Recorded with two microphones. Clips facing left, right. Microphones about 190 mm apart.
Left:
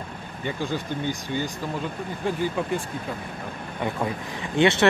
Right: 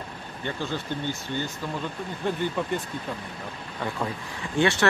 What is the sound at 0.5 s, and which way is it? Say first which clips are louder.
Speech: left 3 dB; 15° left (ahead or behind).